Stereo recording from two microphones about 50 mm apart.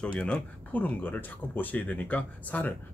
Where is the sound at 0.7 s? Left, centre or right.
Left.